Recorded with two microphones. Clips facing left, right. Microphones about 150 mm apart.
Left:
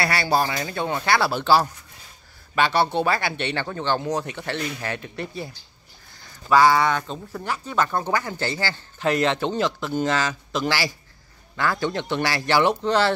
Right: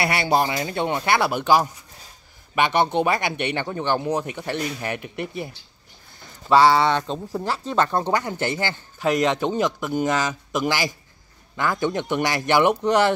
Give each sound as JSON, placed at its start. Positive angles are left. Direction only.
{"t": 0.0, "sound": "speech", "side_deg": -20}